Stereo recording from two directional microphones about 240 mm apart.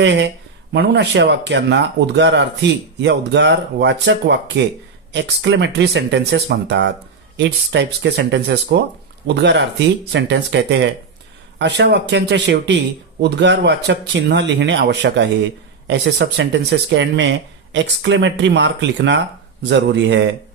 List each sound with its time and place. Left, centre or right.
0.0 s speech: right